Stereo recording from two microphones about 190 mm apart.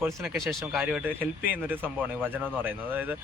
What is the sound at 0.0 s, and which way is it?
Speech, 10° right (ahead or behind).